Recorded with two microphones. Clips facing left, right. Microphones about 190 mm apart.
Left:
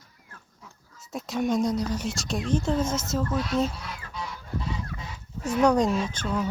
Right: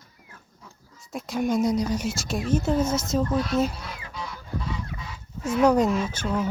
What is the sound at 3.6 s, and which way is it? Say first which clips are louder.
Music: right 2 dB; 5° right (ahead or behind).